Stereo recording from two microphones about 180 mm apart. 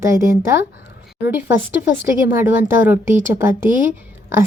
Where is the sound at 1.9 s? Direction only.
15° right (ahead or behind).